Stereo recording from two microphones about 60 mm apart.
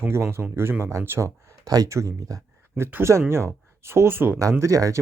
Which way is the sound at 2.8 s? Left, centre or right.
Right.